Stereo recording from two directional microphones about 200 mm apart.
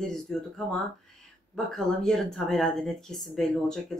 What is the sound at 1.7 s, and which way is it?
Speech, centre (ahead or behind).